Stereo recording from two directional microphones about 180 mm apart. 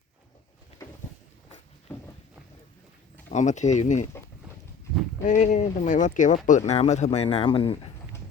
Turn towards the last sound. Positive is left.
turn(degrees=30)  # may be behind; listen again after turning